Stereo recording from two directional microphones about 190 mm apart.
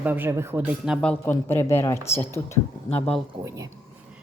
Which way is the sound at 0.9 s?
10° left (ahead or behind).